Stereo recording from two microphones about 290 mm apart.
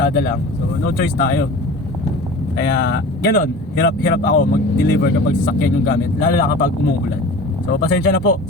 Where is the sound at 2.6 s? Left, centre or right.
Left.